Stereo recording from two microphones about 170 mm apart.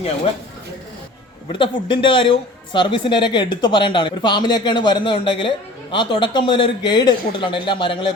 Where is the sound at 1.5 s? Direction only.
30° left (ahead or behind).